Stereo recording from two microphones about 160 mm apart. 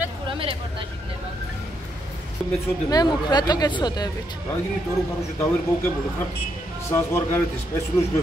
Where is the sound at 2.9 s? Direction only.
25° left (ahead or behind).